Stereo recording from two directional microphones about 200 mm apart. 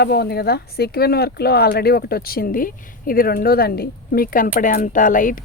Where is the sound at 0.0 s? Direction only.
55° left (ahead or behind).